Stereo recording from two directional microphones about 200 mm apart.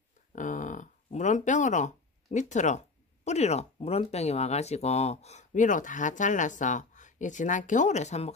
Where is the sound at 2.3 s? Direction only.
35° left (ahead or behind).